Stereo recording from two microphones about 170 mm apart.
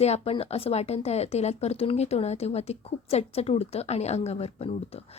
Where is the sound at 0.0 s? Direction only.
35° left (ahead or behind).